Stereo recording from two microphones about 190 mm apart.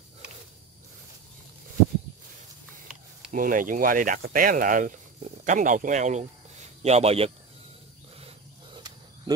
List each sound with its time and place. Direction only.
3.3 s speech: 45° right (ahead or behind)
8.7 s wild animals: 20° right (ahead or behind)